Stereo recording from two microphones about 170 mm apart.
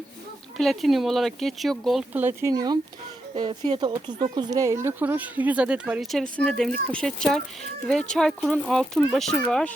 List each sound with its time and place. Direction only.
0.5 s speech: centre (ahead or behind)